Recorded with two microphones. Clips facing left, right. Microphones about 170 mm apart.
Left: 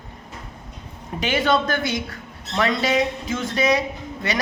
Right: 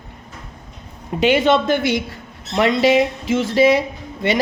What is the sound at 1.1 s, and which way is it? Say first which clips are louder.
A woman's voice: right 6 dB; 25° right (ahead or behind).